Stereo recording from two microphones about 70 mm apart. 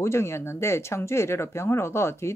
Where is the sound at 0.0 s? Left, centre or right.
Left.